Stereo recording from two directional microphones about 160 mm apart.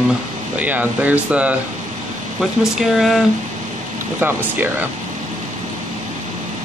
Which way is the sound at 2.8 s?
Centre (ahead or behind).